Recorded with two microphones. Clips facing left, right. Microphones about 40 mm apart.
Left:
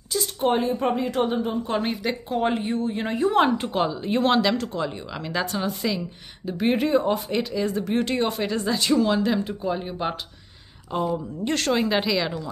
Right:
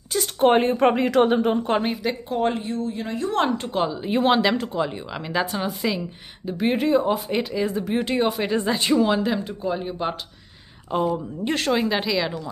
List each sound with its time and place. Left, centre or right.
0.1 s speech: right
1.8 s speech: centre
2.6 s speech: left
3.1 s speech: centre
4.0 s a woman's voice: centre
7.3 s a woman's voice: centre
8.5 s a woman's voice: right; by 10.1 s centre
11.1 s speech: centre